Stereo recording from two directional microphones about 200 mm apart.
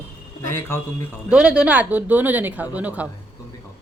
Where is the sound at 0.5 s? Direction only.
10° left (ahead or behind).